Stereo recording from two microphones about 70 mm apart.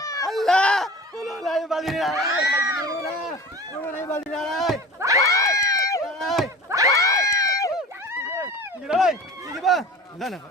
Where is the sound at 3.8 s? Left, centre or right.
Left.